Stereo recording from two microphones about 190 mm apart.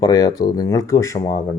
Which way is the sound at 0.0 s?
20° left (ahead or behind).